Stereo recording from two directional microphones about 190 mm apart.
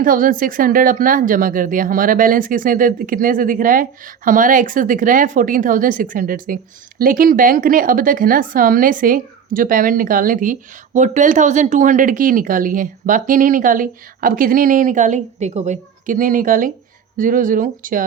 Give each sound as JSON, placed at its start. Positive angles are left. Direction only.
{"t": 0.0, "sound": "a woman's voice", "side_deg": -45}